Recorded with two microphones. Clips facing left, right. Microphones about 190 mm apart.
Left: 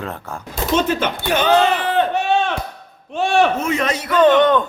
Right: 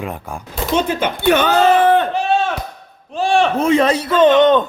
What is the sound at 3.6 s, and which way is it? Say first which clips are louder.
A man's voice: right 6 dB; 30° right (ahead or behind).